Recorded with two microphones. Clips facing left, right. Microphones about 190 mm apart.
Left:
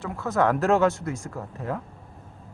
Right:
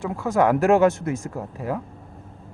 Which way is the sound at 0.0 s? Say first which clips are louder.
Right 3 dB; 15° right (ahead or behind).